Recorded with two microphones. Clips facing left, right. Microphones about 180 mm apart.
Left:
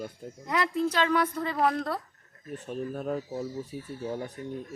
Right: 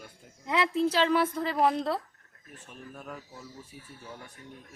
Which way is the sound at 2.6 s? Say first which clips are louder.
Left 12 dB; 35° left (ahead or behind).